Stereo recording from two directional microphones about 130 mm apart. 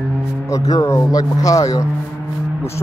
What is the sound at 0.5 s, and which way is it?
Speech, 30° left (ahead or behind).